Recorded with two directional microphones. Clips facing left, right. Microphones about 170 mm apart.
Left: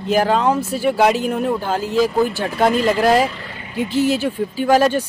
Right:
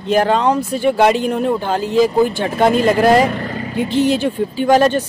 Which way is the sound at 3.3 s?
50° right (ahead or behind).